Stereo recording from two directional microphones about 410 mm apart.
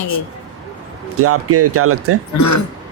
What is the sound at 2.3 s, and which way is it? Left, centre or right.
Speech, left.